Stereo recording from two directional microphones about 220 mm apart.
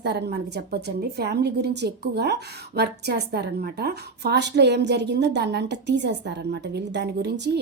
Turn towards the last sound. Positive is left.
turn(degrees=-50)  # may be behind; listen again after turning